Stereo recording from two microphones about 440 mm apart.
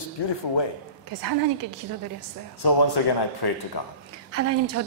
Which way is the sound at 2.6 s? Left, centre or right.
Left.